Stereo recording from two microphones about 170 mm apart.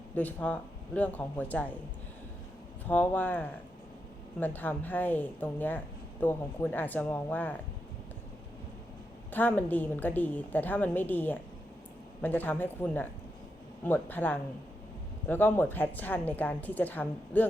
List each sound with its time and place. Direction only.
0.2 s a woman's voice: 10° left (ahead or behind)
2.8 s a woman's voice: 10° left (ahead or behind)
9.3 s a woman's voice: 10° left (ahead or behind)